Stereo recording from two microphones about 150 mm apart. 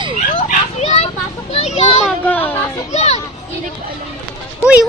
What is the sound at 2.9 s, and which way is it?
Speech, 45° left (ahead or behind).